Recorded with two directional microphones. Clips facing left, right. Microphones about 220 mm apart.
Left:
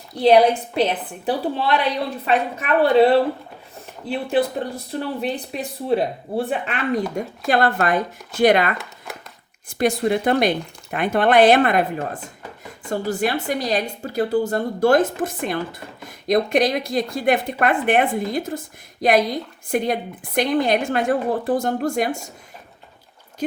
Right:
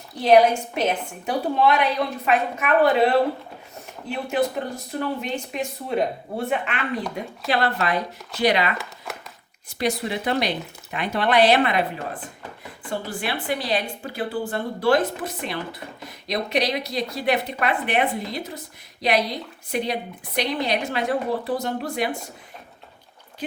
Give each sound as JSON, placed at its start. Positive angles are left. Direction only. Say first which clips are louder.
{"t": 0.8, "sound": "a woman's voice", "louder": "left 3 dB", "side_deg": 35}
{"t": 9.1, "sound": "a sound", "louder": "even", "side_deg": 0}
{"t": 9.6, "sound": "a woman's voice", "louder": "left 6 dB", "side_deg": 50}